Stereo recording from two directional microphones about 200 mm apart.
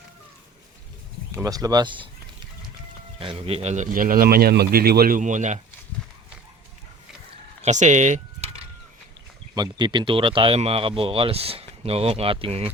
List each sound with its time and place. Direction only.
1.3 s speech: 15° right (ahead or behind)
3.2 s a man's voice: 30° right (ahead or behind)
7.6 s a sound: 35° right (ahead or behind)
9.6 s speech: 25° right (ahead or behind)